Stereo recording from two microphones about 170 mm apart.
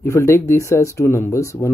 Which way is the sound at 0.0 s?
15° left (ahead or behind).